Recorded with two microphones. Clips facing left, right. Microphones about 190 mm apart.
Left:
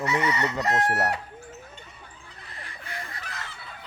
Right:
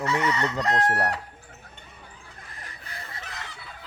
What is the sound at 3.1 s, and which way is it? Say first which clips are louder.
Fowl: even; 20° right (ahead or behind).